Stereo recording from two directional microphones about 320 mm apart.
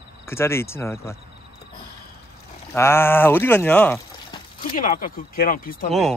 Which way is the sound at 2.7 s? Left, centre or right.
Centre.